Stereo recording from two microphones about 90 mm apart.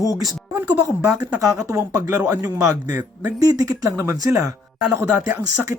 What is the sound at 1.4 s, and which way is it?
Speech, 40° right (ahead or behind).